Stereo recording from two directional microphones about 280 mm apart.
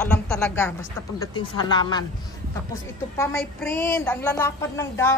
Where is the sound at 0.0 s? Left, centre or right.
Centre.